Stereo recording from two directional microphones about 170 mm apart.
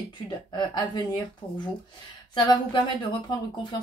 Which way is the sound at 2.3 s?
25° left (ahead or behind).